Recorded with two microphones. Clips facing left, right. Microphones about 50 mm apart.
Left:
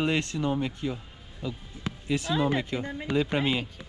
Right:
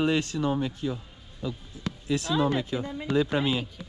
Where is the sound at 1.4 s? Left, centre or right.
Centre.